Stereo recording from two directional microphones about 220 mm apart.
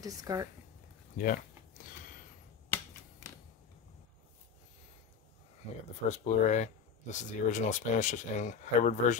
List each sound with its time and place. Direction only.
0.0 s speech: 15° right (ahead or behind)
1.1 s a sound: 40° left (ahead or behind)
6.0 s speech: 35° left (ahead or behind)